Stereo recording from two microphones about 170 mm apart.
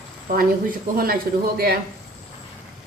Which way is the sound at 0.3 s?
60° right (ahead or behind).